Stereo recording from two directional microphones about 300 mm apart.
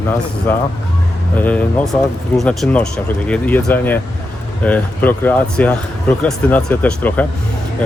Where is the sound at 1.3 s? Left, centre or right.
Centre.